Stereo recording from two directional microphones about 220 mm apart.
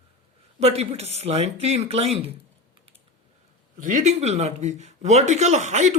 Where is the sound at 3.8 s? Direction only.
35° right (ahead or behind).